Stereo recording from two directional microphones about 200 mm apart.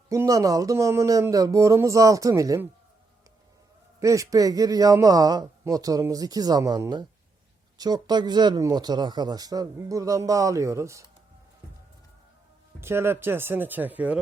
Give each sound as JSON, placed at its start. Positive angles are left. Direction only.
{"t": 0.1, "sound": "a man's voice", "side_deg": -15}
{"t": 4.0, "sound": "a man's voice", "side_deg": -15}
{"t": 12.8, "sound": "a man's voice", "side_deg": -10}